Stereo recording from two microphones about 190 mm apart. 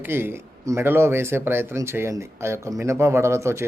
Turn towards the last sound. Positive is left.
turn(degrees=-15)  # may be behind; listen again after turning